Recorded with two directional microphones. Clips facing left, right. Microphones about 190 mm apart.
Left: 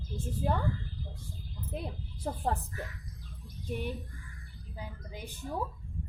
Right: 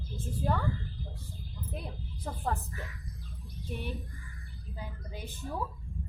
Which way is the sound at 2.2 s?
30° left (ahead or behind).